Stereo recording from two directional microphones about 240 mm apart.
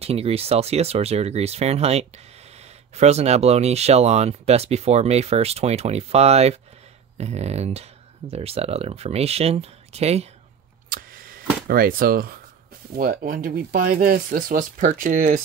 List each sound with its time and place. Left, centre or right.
0.0 s speech: right
10.9 s a sound: right
11.6 s speech: right